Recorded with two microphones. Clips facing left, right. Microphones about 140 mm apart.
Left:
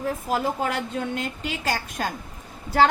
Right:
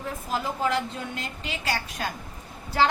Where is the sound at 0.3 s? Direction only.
50° left (ahead or behind).